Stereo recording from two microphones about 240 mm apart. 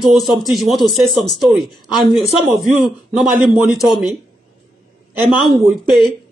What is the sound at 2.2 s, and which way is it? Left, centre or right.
Speech, right.